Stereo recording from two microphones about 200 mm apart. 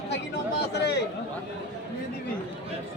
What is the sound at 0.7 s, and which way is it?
Speech, 55° left (ahead or behind).